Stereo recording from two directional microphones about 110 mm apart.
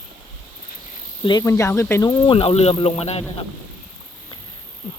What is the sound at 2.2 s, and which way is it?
Speech, 55° left (ahead or behind).